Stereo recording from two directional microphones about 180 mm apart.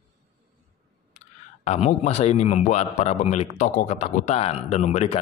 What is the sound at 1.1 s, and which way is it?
Speech, 40° left (ahead or behind).